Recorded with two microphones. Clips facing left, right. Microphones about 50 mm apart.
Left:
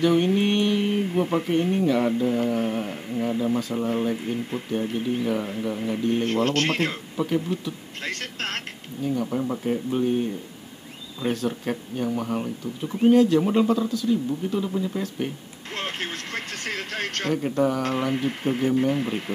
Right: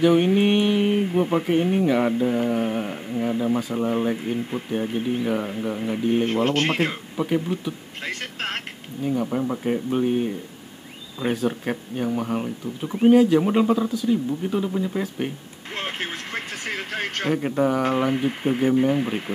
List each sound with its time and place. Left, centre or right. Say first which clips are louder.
0.0 s speech: right 3 dB; centre